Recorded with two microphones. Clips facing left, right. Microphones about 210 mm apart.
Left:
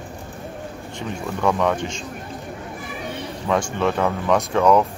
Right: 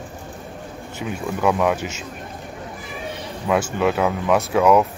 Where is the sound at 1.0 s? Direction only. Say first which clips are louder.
Right 1 dB; 5° right (ahead or behind).